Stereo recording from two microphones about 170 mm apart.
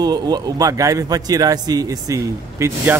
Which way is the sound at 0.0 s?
25° right (ahead or behind).